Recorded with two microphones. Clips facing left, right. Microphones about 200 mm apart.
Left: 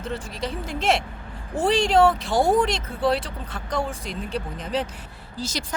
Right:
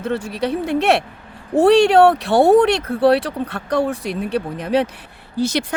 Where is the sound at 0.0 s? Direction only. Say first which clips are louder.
Right 8 dB; 65° right (ahead or behind).